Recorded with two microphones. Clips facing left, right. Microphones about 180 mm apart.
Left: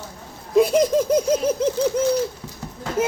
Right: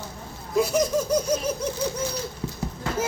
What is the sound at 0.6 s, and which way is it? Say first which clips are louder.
Laughter: left 6 dB; 25° left (ahead or behind).